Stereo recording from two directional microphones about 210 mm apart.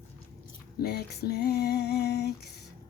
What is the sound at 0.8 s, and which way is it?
Speech, 50° left (ahead or behind).